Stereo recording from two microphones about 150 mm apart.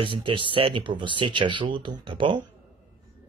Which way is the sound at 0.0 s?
35° right (ahead or behind).